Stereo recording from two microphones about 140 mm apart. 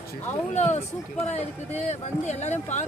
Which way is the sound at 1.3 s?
55° left (ahead or behind).